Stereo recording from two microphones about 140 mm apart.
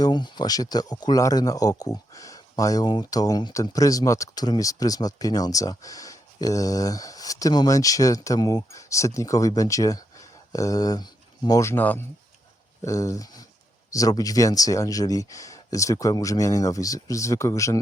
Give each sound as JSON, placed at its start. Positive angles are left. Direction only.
{"t": 0.0, "sound": "speech", "side_deg": 30}